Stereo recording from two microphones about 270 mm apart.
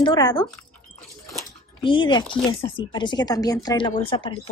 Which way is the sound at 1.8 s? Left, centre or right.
Centre.